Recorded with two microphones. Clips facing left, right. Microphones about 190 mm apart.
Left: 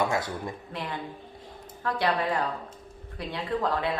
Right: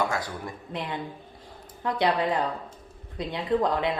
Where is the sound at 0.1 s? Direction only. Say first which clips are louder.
Left 2 dB; 25° left (ahead or behind).